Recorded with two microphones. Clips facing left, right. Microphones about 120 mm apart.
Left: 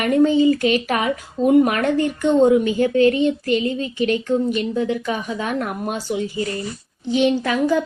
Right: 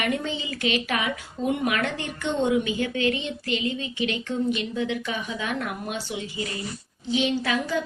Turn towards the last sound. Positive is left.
turn(degrees=45)  # may be behind; listen again after turning